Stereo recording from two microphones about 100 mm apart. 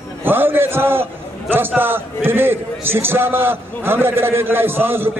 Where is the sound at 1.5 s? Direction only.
20° right (ahead or behind).